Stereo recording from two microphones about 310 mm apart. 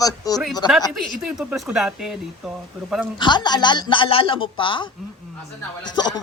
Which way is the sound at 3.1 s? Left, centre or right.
Centre.